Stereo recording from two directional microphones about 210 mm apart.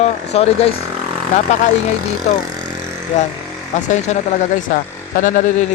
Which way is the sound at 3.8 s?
35° left (ahead or behind).